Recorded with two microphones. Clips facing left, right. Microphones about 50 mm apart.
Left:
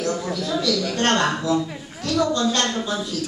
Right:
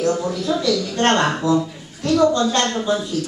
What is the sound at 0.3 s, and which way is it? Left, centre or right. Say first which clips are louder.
Speech: right 3 dB; centre.